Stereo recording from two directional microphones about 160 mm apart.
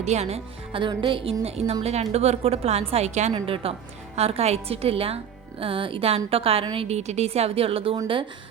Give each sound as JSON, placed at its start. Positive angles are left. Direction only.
{"t": 0.0, "sound": "a woman's voice", "side_deg": -45}